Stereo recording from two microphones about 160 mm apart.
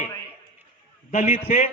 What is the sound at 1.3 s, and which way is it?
Speech, 50° left (ahead or behind).